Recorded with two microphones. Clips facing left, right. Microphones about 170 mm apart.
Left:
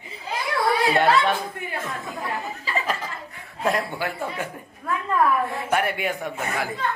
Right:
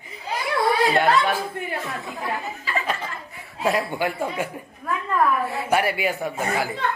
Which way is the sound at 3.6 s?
5° right (ahead or behind).